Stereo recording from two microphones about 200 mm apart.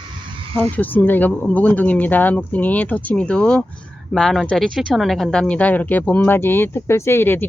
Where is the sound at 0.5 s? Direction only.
10° left (ahead or behind).